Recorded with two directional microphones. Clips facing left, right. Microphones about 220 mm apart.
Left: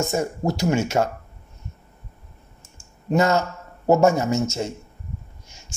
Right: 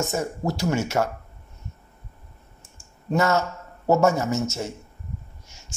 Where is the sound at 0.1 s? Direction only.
15° left (ahead or behind).